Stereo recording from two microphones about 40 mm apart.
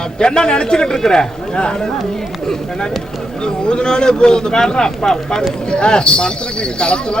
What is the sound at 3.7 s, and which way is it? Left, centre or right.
Speech, left.